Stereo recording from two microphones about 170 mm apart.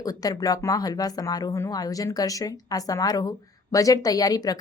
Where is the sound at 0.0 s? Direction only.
20° left (ahead or behind).